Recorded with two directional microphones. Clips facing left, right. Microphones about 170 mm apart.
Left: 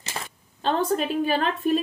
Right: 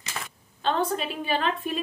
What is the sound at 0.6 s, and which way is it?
A woman's voice, 45° left (ahead or behind).